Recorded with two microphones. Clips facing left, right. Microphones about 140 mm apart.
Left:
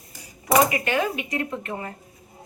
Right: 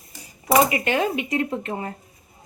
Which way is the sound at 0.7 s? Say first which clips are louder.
Right 2 dB; 25° right (ahead or behind).